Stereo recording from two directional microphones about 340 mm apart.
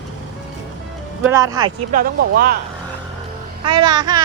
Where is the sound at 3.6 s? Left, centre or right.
Centre.